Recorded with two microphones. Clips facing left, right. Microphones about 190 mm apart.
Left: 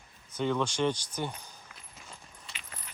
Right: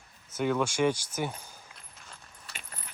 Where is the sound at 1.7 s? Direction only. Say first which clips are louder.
Left 2 dB; centre (ahead or behind).